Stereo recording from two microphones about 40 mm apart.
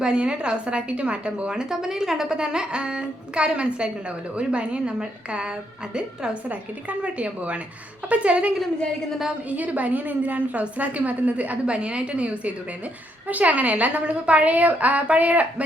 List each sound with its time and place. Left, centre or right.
0.0 s a woman's voice: right
6.5 s a woman's voice: right